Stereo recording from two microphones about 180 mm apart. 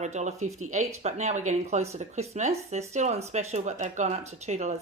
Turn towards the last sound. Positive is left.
turn(degrees=-40)  # may be behind; listen again after turning